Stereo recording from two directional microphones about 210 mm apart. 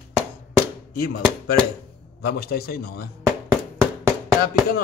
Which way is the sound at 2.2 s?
45° left (ahead or behind).